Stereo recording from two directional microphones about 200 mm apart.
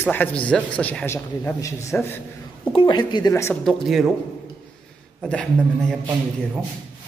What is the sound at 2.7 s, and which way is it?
Speech, 25° left (ahead or behind).